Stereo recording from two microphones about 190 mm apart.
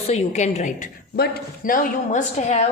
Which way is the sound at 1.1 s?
50° left (ahead or behind).